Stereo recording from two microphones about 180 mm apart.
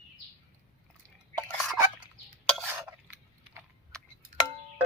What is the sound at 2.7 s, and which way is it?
Stir, 10° right (ahead or behind).